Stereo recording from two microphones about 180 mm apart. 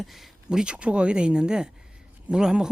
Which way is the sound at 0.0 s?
Centre (ahead or behind).